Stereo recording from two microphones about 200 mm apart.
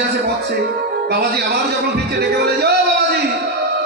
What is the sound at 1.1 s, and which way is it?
Speech, 55° right (ahead or behind).